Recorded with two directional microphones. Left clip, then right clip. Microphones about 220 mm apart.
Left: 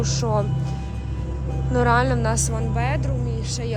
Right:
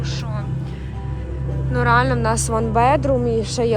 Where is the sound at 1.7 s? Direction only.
10° left (ahead or behind).